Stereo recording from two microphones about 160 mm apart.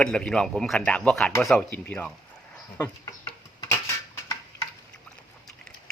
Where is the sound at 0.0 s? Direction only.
5° left (ahead or behind).